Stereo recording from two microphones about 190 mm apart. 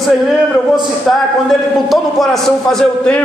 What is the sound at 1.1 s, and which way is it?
A man's voice, centre (ahead or behind).